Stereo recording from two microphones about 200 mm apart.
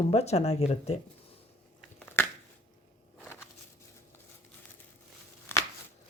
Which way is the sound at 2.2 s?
10° left (ahead or behind).